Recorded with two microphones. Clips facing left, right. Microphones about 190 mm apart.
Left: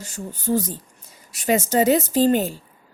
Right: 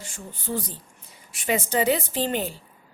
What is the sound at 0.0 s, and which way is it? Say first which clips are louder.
A woman's voice: left 8 dB; 40° left (ahead or behind).